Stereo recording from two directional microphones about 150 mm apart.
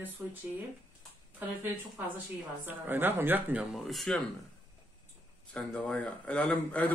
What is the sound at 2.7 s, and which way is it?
Speech, 15° right (ahead or behind).